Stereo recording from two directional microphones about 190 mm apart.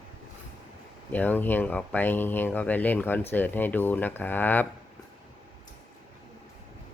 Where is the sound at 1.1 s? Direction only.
10° left (ahead or behind).